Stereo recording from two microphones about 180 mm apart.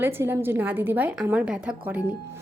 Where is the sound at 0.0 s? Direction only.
10° right (ahead or behind).